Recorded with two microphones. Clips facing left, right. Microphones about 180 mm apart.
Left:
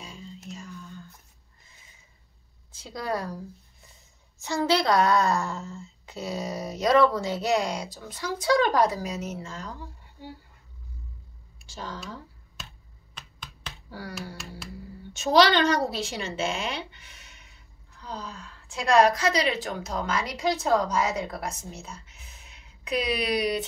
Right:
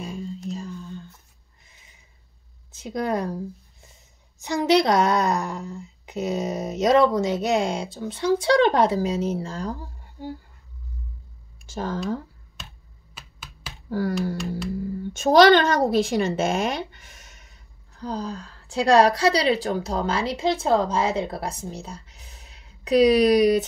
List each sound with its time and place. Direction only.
0.0 s mantra: 50° right (ahead or behind)
0.5 s a sound: 30° right (ahead or behind)
2.7 s speech: 20° right (ahead or behind); by 10.3 s 40° right (ahead or behind)
11.6 s speech: 50° right (ahead or behind)
12.6 s finger snapping: centre (ahead or behind)
13.8 s speech: 50° right (ahead or behind)
15.1 s a woman's voice: 50° right (ahead or behind)